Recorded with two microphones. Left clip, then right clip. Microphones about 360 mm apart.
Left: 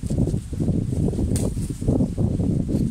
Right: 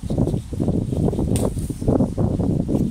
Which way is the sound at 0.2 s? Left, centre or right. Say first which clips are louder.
Right 4 dB; right.